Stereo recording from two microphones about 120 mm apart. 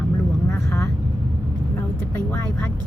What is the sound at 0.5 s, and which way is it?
Speech, 20° left (ahead or behind).